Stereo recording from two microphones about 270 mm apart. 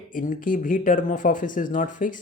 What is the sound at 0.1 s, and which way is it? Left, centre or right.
Speech, left.